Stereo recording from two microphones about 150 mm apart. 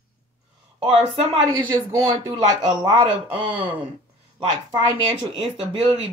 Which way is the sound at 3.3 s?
35° right (ahead or behind).